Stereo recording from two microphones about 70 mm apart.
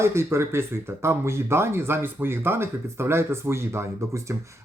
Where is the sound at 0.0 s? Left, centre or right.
Right.